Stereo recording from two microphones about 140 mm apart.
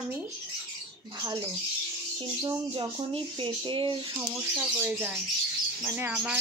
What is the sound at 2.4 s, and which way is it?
Speech, 30° right (ahead or behind).